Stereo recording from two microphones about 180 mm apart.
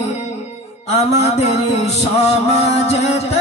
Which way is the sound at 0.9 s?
35° left (ahead or behind).